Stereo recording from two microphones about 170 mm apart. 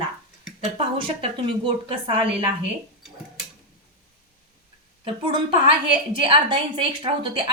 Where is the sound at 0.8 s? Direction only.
35° right (ahead or behind).